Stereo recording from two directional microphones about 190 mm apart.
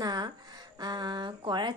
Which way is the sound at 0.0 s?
20° right (ahead or behind).